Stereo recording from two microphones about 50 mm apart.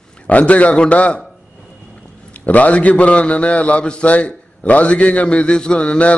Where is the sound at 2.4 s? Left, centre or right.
Left.